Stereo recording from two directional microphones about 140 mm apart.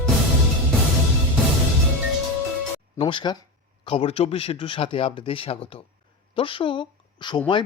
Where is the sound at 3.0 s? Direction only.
35° left (ahead or behind).